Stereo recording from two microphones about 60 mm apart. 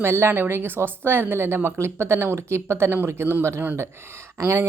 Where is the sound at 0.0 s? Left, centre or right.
Right.